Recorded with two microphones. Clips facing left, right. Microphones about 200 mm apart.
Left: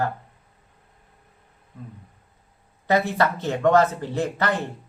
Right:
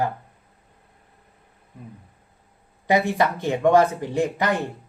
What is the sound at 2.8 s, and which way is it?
Speech, 15° right (ahead or behind).